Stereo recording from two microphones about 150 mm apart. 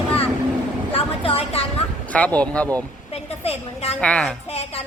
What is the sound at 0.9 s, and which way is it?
Speech, 40° left (ahead or behind).